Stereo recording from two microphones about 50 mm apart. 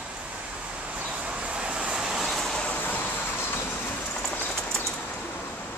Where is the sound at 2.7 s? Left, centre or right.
Left.